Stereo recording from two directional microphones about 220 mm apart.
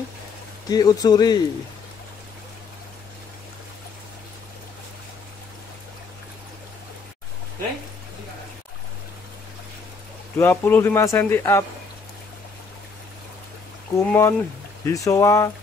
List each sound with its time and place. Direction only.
0.7 s a man's voice: 15° left (ahead or behind)
10.3 s a man's voice: 10° left (ahead or behind)
13.9 s a man's voice: 10° left (ahead or behind)